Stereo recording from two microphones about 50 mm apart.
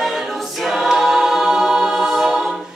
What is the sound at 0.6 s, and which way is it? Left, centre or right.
Choir, centre.